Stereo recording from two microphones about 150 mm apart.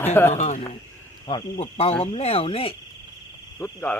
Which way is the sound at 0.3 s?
50° left (ahead or behind).